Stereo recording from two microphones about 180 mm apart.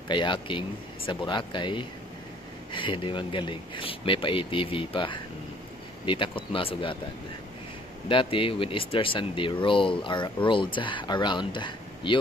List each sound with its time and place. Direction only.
0.1 s speech: 25° left (ahead or behind)
8.1 s speech: 30° left (ahead or behind)